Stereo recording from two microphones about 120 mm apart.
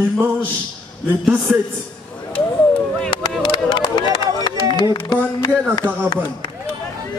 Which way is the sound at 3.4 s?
40° left (ahead or behind).